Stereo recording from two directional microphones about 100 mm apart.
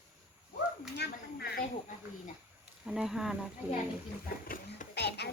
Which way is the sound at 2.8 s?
5° right (ahead or behind).